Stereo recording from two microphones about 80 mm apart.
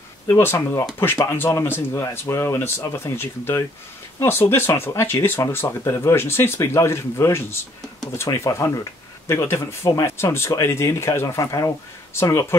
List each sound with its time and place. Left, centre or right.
0.3 s speech: left
9.3 s speech: left